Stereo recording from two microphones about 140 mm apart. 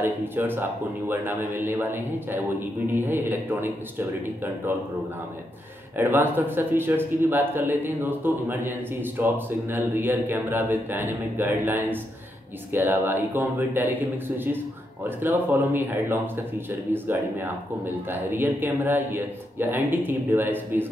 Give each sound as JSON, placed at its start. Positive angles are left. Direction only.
{"t": 0.0, "sound": "speech", "side_deg": -15}
{"t": 5.9, "sound": "speech", "side_deg": -15}
{"t": 15.0, "sound": "speech", "side_deg": -15}